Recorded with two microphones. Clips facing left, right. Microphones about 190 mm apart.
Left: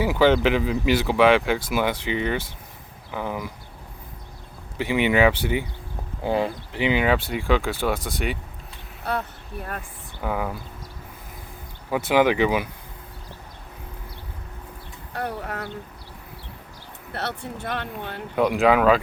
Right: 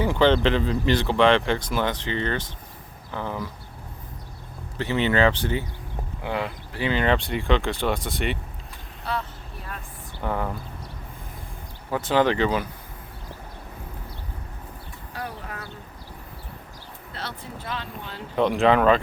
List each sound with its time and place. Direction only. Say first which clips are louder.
0.0 s speech: left 1 dB; 5° left (ahead or behind)
4.8 s speech: left 2 dB; 10° left (ahead or behind)
6.2 s speech: left 5 dB; 30° left (ahead or behind)
6.7 s speech: left 1 dB; 15° left (ahead or behind)
9.0 s speech: left 2 dB; 55° left (ahead or behind)
10.2 s speech: left 1 dB; 5° left (ahead or behind)
11.9 s speech: left 2 dB; 10° left (ahead or behind)
15.1 s a sound: left 5 dB; 65° left (ahead or behind)
17.1 s speech: left 6 dB; 65° left (ahead or behind)
18.3 s speech: left 1 dB; 5° left (ahead or behind)